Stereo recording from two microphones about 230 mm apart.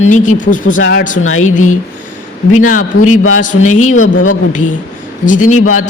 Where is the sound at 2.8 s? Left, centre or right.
Left.